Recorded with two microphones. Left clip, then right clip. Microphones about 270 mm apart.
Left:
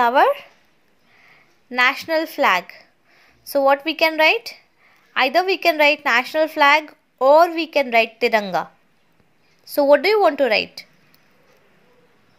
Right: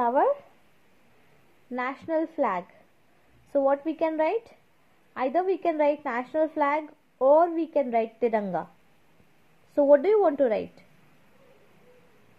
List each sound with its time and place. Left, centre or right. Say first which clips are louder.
0.0 s speech: left 8 dB; left
1.7 s a woman's voice: left 11 dB; left
3.8 s a woman's voice: left 10 dB; centre
5.4 s a woman's voice: left 7 dB; centre
6.9 s a woman's voice: left 6 dB; left
7.5 s a woman's voice: left 8 dB; centre
9.8 s a woman's voice: left 5 dB; centre